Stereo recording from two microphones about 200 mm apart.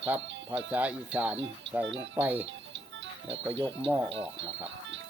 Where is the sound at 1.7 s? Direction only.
65° right (ahead or behind).